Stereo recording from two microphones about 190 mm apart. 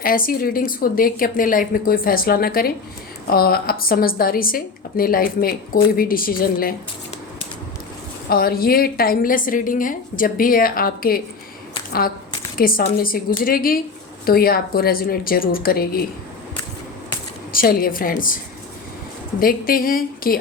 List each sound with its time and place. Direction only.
0.0 s a woman's voice: 50° left (ahead or behind)
8.3 s a woman's voice: 50° left (ahead or behind)
12.5 s a woman's voice: 50° left (ahead or behind)
17.5 s a woman's voice: 50° left (ahead or behind)
19.4 s a woman's voice: 50° left (ahead or behind)